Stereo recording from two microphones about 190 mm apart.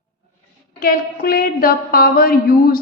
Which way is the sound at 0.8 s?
50° left (ahead or behind).